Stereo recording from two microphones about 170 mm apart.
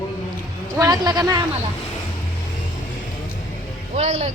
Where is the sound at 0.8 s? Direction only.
25° right (ahead or behind).